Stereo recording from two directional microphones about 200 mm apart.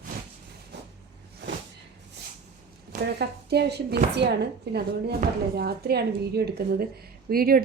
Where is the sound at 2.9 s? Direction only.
55° right (ahead or behind).